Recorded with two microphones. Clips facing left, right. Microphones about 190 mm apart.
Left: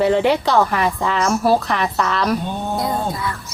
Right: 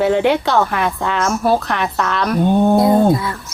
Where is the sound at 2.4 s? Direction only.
50° right (ahead or behind).